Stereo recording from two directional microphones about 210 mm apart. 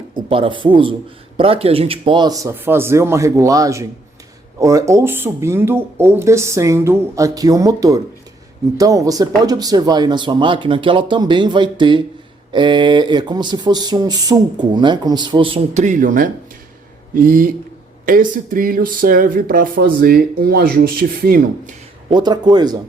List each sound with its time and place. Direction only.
0.2 s a man's voice: 25° right (ahead or behind); by 21.4 s 45° right (ahead or behind)
22.1 s speech: 20° right (ahead or behind)